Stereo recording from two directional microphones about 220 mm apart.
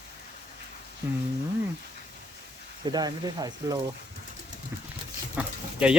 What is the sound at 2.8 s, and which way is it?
Speech, 20° right (ahead or behind).